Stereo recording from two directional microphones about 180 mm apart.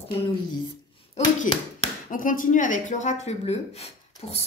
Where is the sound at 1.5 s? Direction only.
45° left (ahead or behind).